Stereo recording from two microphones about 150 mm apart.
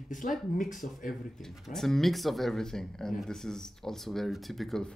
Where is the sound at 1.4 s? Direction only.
5° left (ahead or behind).